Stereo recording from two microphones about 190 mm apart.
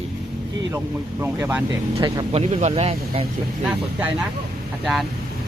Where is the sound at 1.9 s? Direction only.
30° right (ahead or behind).